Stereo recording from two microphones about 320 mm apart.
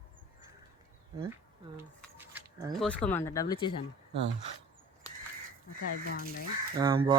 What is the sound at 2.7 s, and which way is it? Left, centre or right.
Speech, centre.